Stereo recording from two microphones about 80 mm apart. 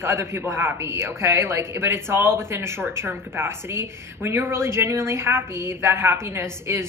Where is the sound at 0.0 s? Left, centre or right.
Right.